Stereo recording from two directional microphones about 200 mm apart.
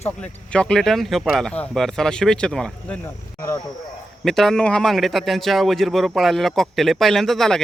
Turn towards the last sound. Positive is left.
turn(degrees=0)  # may be behind; listen again after turning